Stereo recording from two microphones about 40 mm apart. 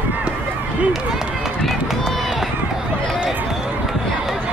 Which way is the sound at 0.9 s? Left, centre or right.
Centre.